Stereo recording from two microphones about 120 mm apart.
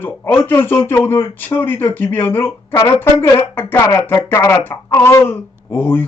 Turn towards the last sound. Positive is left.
turn(degrees=15)  # may be behind; listen again after turning